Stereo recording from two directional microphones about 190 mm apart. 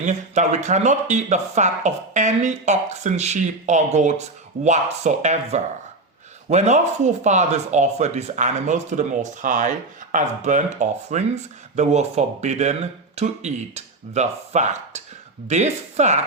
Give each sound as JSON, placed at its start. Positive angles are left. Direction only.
{"t": 0.0, "sound": "speech", "side_deg": -40}